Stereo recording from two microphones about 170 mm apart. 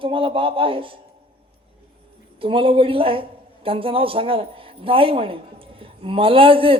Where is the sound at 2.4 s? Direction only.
30° right (ahead or behind).